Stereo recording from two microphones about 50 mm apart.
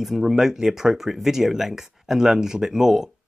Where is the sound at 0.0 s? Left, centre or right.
Centre.